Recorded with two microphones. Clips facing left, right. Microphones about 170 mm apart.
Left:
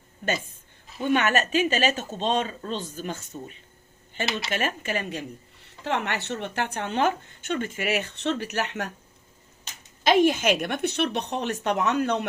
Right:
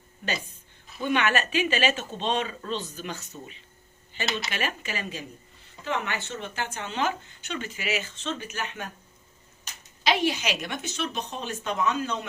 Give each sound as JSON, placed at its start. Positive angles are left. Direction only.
{"t": 1.0, "sound": "a woman's voice", "side_deg": 45}
{"t": 5.8, "sound": "a woman's voice", "side_deg": 70}
{"t": 10.0, "sound": "a woman's voice", "side_deg": 50}